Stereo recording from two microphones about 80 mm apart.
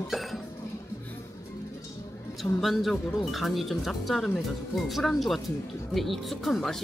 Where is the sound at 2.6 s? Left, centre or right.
Centre.